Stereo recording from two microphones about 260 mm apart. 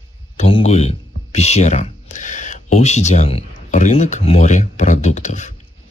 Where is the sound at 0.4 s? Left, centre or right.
Left.